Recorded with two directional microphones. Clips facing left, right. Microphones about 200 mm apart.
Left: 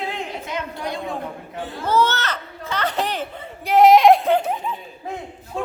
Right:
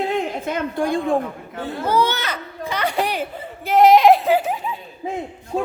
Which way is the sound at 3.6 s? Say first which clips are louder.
Even; centre (ahead or behind).